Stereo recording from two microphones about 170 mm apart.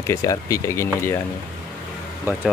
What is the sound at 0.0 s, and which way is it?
Speech, 15° left (ahead or behind).